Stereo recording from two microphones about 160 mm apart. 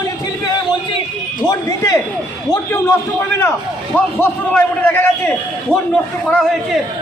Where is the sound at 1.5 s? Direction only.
20° left (ahead or behind).